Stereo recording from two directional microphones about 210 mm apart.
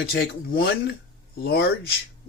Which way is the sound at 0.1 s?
50° left (ahead or behind).